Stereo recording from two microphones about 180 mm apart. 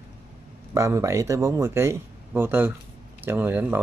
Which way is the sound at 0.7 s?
15° right (ahead or behind).